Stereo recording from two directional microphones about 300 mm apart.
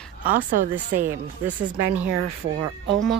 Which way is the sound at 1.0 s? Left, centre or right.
Centre.